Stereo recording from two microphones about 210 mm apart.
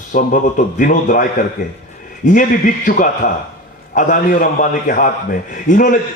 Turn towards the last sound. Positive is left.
turn(degrees=40)  # may be behind; listen again after turning